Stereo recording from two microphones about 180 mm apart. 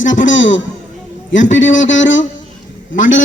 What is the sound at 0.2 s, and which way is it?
A man's voice, 90° left.